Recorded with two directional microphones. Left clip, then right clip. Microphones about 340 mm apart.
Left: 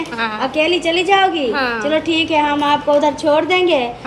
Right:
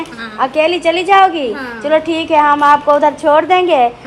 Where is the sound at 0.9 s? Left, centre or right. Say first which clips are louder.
Right 5 dB; centre.